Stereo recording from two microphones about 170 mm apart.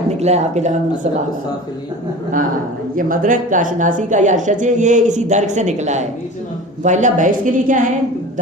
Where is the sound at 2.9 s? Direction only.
55° right (ahead or behind).